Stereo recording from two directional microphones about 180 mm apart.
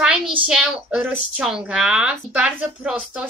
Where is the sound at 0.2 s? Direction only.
30° right (ahead or behind).